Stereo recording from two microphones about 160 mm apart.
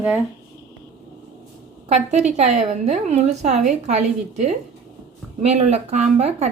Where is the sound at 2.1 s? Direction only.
45° right (ahead or behind).